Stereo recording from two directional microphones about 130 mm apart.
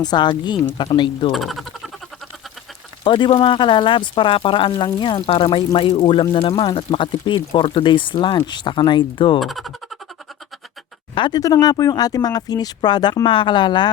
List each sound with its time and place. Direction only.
0.0 s speech: 35° left (ahead or behind)
1.3 s speech: centre (ahead or behind)
3.0 s speech: 35° left (ahead or behind)
9.4 s speech: centre (ahead or behind)
11.1 s speech: 35° left (ahead or behind)